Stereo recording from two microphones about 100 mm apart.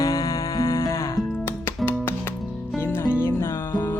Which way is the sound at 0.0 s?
35° left (ahead or behind).